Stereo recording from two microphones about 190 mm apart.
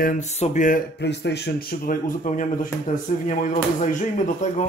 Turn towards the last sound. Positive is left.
turn(degrees=40)  # may be behind; listen again after turning